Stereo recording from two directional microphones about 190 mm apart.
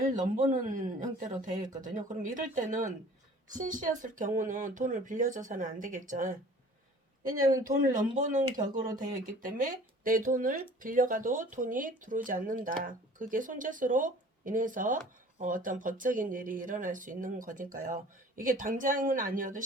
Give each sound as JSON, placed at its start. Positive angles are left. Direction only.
{"t": 0.1, "sound": "speech", "side_deg": -40}
{"t": 7.6, "sound": "speech", "side_deg": -45}